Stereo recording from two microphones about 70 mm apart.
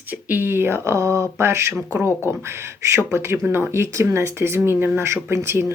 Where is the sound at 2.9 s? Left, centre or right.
Right.